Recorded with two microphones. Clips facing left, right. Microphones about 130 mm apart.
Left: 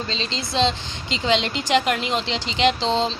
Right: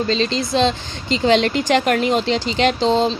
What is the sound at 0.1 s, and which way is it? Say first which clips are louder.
Speech: right 9 dB; 50° right (ahead or behind).